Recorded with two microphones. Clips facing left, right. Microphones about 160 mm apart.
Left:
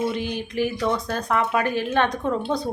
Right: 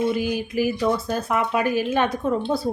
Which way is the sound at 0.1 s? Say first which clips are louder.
Right 4 dB; 5° right (ahead or behind).